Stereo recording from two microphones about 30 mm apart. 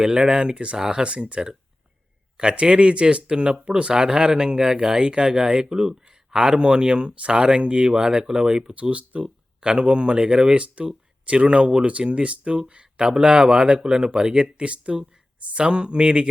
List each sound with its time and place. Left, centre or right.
0.0 s speech: right
0.8 s speech: right
1.0 s speech: right
3.3 s speech: right
3.9 s speech: right
8.7 s speech: right
9.2 s speech: right
12.0 s speech: right
14.6 s speech: right
15.5 s speech: right